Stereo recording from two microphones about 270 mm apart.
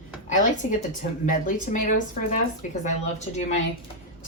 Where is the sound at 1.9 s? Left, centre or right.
Left.